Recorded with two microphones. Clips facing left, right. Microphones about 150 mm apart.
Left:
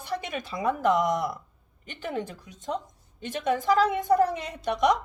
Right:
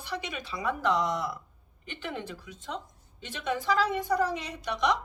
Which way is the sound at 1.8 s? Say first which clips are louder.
Left 4 dB; 45° left (ahead or behind).